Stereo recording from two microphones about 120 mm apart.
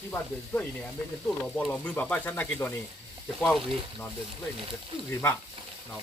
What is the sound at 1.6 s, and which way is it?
Speech, 10° left (ahead or behind).